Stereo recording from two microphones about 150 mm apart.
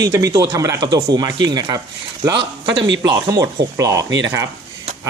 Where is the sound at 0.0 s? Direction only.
25° right (ahead or behind).